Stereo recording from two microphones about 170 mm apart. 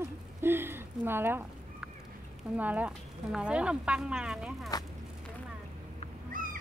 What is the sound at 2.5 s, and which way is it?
Speech, 10° right (ahead or behind).